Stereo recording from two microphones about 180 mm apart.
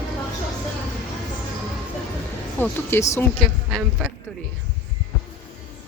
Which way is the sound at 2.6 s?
10° left (ahead or behind).